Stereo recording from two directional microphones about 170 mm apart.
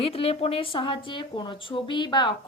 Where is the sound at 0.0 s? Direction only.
35° left (ahead or behind).